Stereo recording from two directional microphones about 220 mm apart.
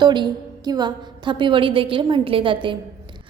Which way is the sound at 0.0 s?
20° right (ahead or behind).